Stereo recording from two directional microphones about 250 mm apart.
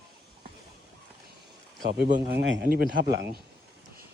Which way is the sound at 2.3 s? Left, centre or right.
Right.